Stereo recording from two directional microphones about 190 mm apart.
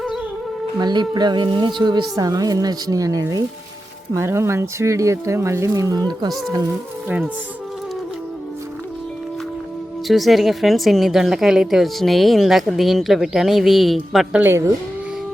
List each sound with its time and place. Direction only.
0.8 s speech: 20° right (ahead or behind)
10.1 s a woman's voice: centre (ahead or behind)
14.4 s speech: 15° right (ahead or behind)